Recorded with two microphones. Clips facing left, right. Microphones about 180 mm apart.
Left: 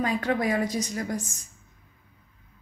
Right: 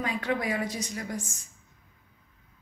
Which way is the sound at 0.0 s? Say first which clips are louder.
Left 4 dB; 40° left (ahead or behind).